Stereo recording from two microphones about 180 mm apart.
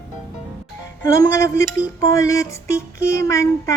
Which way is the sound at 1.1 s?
15° left (ahead or behind).